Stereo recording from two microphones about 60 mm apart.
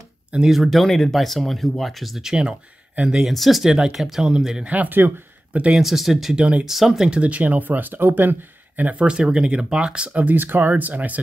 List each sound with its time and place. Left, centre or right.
0.5 s speech: centre
3.3 s speech: centre
3.7 s speech: centre
4.6 s speech: right
5.8 s speech: centre
6.3 s speech: centre
7.2 s speech: right
10.2 s speech: right